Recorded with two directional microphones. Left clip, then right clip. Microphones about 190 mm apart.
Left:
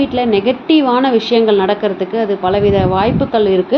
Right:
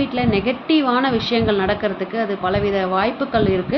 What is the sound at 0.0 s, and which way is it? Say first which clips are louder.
A woman's voice: left 6 dB; 15° left (ahead or behind).